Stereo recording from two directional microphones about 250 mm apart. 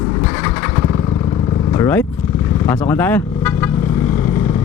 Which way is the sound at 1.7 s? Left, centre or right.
Centre.